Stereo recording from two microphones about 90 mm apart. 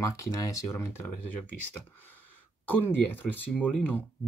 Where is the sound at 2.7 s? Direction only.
20° left (ahead or behind).